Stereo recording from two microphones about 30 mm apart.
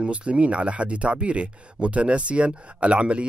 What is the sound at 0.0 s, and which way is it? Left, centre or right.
Speech, right.